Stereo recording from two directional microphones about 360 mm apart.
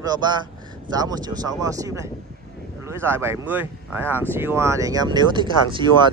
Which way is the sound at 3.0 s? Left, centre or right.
Centre.